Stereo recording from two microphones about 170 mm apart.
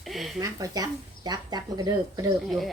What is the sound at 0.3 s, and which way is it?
Speech, 20° right (ahead or behind).